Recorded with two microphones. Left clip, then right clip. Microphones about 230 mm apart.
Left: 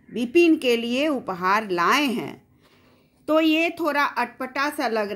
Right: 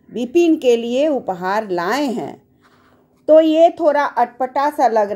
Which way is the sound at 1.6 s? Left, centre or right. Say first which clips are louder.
Right 1 dB; left.